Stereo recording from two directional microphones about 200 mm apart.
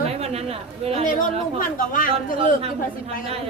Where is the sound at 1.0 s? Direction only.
40° left (ahead or behind).